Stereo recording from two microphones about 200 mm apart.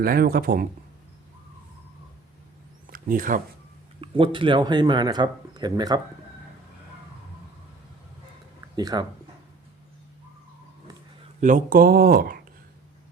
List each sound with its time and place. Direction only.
0.0 s speech: 45° right (ahead or behind)
2.8 s a sound: 45° right (ahead or behind)
4.0 s speech: 25° right (ahead or behind)
8.7 s speech: 20° right (ahead or behind)
11.3 s speech: 40° right (ahead or behind)